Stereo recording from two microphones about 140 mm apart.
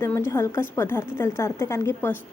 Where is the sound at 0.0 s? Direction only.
15° left (ahead or behind).